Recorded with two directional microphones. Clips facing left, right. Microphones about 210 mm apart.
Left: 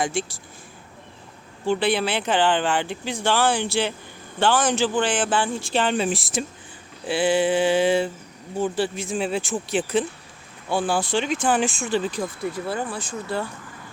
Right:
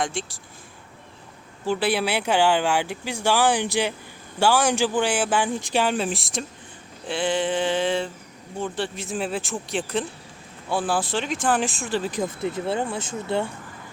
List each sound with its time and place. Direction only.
0.0 s speech: 5° left (ahead or behind)
1.6 s speech: 5° right (ahead or behind)
7.1 s a sound: 5° left (ahead or behind)
8.5 s speech: 5° left (ahead or behind)
12.1 s speech: 20° right (ahead or behind)